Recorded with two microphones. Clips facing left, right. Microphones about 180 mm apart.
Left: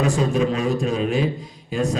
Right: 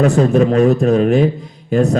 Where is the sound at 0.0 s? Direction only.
60° right (ahead or behind).